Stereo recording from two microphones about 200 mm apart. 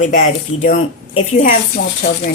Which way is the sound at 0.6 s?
40° left (ahead or behind).